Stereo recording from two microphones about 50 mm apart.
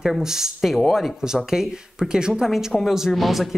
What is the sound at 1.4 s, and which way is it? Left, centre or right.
A woman's voice, centre.